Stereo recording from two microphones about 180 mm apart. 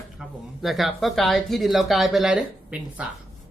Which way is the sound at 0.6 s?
Centre (ahead or behind).